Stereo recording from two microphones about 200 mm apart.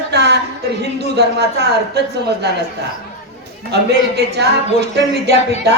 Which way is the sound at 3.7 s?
55° right (ahead or behind).